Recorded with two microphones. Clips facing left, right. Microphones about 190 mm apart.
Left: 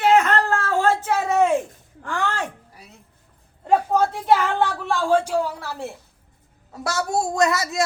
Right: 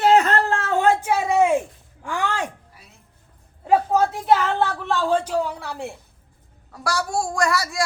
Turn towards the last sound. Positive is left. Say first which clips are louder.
# left 2 dB
turn(degrees=20)  # may be behind; listen again after turning